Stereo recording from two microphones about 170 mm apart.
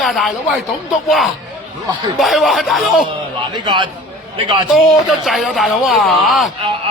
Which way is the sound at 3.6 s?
30° right (ahead or behind).